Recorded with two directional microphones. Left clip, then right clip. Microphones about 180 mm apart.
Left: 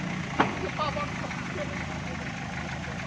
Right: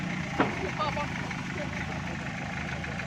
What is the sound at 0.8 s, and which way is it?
Vehicle, 55° left (ahead or behind).